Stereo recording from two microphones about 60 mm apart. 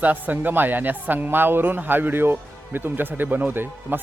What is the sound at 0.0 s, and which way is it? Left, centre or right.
A man's voice, right.